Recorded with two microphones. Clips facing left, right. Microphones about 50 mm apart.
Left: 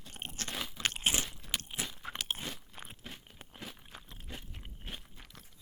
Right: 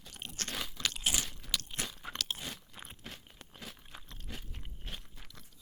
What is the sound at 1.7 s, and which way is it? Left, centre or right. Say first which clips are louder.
Crunch: even; centre.